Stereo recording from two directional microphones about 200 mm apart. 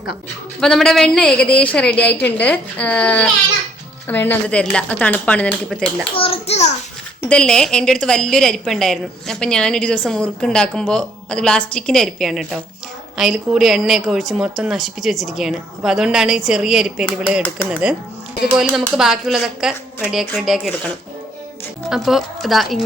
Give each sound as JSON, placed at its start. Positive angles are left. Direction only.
{"t": 0.6, "sound": "a woman's voice", "side_deg": 5}
{"t": 6.1, "sound": "a child's voice", "side_deg": 30}
{"t": 7.2, "sound": "a woman's voice", "side_deg": 5}
{"t": 21.8, "sound": "a woman's voice", "side_deg": 0}